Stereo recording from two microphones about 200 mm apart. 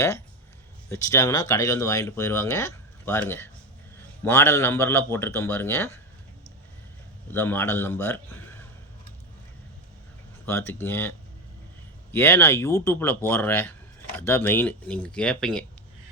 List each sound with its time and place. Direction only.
0.9 s speech: 15° left (ahead or behind)
7.3 s speech: 10° left (ahead or behind)
10.4 s speech: 10° left (ahead or behind)
12.1 s speech: 10° left (ahead or behind)